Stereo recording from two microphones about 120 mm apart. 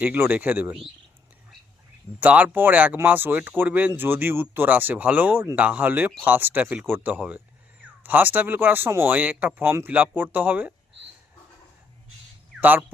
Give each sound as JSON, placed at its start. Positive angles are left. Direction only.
{"t": 0.0, "sound": "speech", "side_deg": -15}
{"t": 2.2, "sound": "speech", "side_deg": -15}
{"t": 12.5, "sound": "a sound", "side_deg": -15}